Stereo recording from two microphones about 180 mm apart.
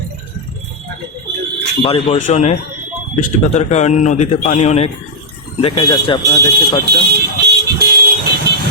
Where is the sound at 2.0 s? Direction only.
45° left (ahead or behind).